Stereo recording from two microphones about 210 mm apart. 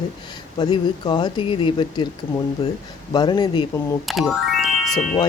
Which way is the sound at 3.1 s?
20° left (ahead or behind).